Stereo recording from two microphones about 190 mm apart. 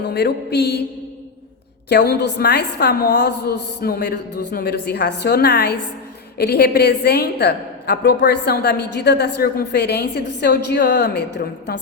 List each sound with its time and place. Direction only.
0.0 s a woman's voice: 55° left (ahead or behind)
1.9 s a woman's voice: 60° left (ahead or behind)